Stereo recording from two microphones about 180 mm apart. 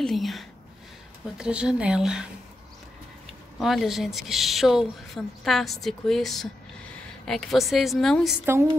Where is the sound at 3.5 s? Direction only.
Centre (ahead or behind).